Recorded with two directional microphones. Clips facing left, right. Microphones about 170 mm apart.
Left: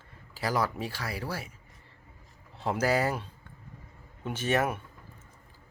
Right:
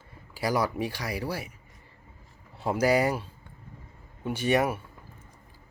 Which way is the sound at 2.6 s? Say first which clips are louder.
Right 3 dB; 10° right (ahead or behind).